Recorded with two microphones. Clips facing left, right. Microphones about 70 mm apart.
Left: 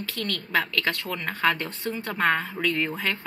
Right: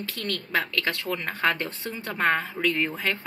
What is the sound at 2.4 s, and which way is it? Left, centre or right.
Speech, centre.